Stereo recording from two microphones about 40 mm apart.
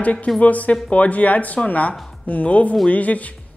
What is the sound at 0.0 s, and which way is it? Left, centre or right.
A woman's voice, left.